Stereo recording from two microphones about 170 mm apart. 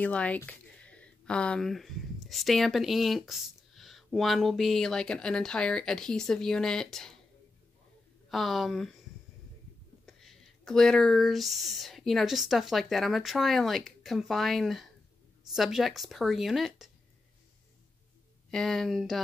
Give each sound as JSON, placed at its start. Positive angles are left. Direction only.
{"t": 0.0, "sound": "speech", "side_deg": 10}
{"t": 8.3, "sound": "speech", "side_deg": 0}
{"t": 10.0, "sound": "speech", "side_deg": 0}
{"t": 18.5, "sound": "speech", "side_deg": 0}